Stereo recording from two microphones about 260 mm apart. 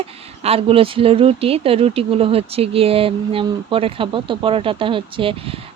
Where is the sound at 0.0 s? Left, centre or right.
Right.